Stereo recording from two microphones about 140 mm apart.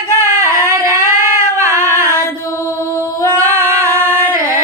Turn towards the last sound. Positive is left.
turn(degrees=-20)  # may be behind; listen again after turning